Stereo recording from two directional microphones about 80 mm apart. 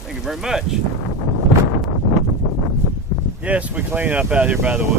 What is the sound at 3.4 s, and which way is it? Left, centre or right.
Speech, centre.